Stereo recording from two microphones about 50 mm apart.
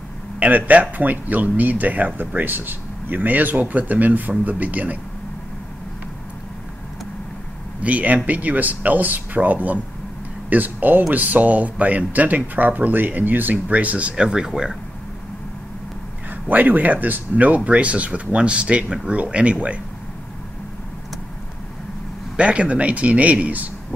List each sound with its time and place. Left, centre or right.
0.4 s speech: right
7.8 s speech: right; by 14.8 s centre
16.3 s speech: right
22.4 s speech: right